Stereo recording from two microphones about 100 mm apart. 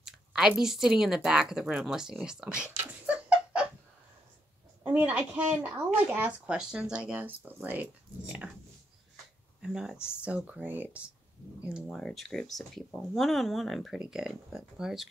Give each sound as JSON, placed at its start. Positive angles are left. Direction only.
{"t": 0.0, "sound": "a woman's voice", "side_deg": -5}
{"t": 2.8, "sound": "a sound", "side_deg": -15}
{"t": 4.8, "sound": "speech", "side_deg": -15}
{"t": 9.6, "sound": "speech", "side_deg": -5}
{"t": 11.9, "sound": "a woman's voice", "side_deg": 5}